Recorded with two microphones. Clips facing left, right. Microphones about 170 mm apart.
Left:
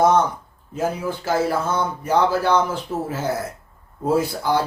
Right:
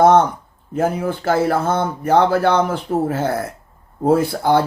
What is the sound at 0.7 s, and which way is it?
Speech, 55° right (ahead or behind).